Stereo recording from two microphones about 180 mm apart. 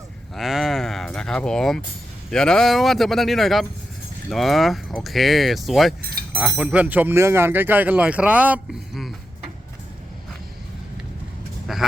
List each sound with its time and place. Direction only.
0.3 s speech: centre (ahead or behind)
6.0 s speech: 55° right (ahead or behind)
6.3 s speech: 5° right (ahead or behind)
11.7 s a sound: centre (ahead or behind)